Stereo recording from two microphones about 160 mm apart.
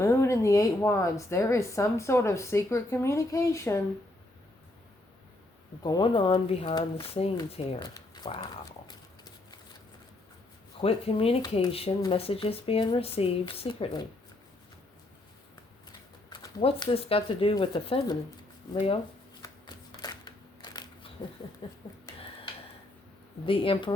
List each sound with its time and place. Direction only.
0.0 s a woman's voice: 20° left (ahead or behind)
5.8 s speech: 30° left (ahead or behind)
7.9 s a sound: 25° left (ahead or behind)
10.8 s speech: 35° left (ahead or behind)
16.3 s speech: 30° left (ahead or behind)
19.4 s shuffling cards: 25° left (ahead or behind)
21.6 s speech: 30° left (ahead or behind)
23.5 s speech: 35° left (ahead or behind)